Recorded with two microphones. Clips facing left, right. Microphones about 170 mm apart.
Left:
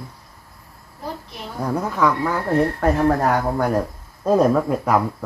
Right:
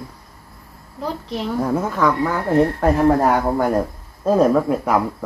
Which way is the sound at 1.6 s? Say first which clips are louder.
Left 1 dB; 5° right (ahead or behind).